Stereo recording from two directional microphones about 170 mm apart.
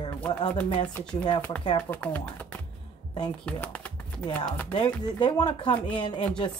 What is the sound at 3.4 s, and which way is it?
Shuffling cards, 10° left (ahead or behind).